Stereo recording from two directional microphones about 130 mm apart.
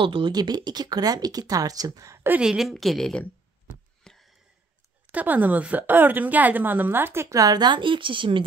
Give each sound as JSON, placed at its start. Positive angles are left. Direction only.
{"t": 0.0, "sound": "speech", "side_deg": -40}
{"t": 4.1, "sound": "a sound", "side_deg": 5}
{"t": 5.0, "sound": "a woman's voice", "side_deg": -15}